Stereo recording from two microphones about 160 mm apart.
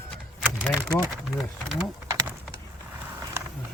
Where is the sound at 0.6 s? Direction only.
5° left (ahead or behind).